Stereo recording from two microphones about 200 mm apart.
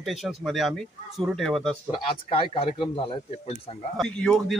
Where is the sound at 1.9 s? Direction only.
25° left (ahead or behind).